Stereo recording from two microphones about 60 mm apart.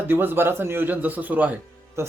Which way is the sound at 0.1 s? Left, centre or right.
Right.